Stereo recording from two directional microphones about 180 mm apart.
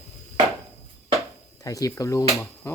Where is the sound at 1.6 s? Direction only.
20° left (ahead or behind).